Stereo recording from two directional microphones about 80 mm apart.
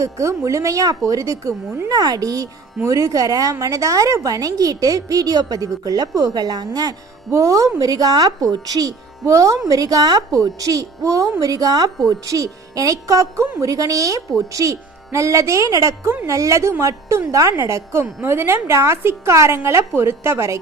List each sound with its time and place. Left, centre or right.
0.0 s speech: right
1.9 s speech: right
7.3 s speech: right